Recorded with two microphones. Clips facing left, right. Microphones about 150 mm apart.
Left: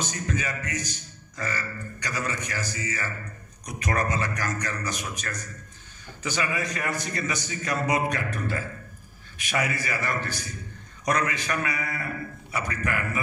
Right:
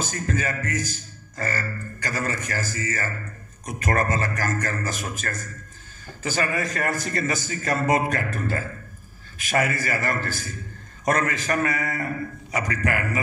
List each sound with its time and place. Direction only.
0.1 s speech: 45° right (ahead or behind)
12.5 s a man's voice: 90° right